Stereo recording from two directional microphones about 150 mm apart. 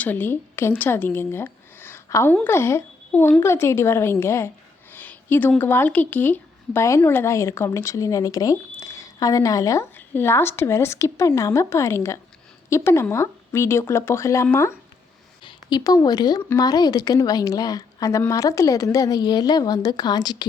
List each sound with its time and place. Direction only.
0.0 s a woman's voice: 10° left (ahead or behind)
15.4 s a woman's voice: 25° left (ahead or behind)